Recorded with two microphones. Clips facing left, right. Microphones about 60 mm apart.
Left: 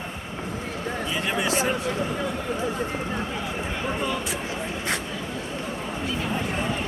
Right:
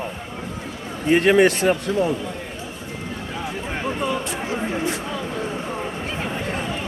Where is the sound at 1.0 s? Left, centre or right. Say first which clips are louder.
Right 13 dB; right.